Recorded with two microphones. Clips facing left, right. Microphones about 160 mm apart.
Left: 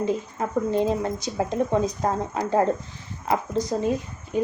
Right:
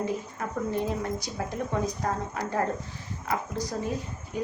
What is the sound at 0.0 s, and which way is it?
A woman's voice, 25° left (ahead or behind).